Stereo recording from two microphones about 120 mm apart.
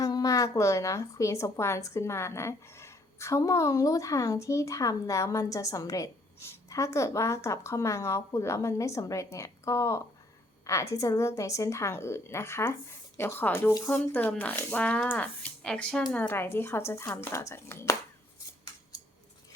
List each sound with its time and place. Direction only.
0.0 s a woman's voice: 30° left (ahead or behind)